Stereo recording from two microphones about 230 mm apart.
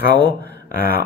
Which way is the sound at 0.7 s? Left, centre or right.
Left.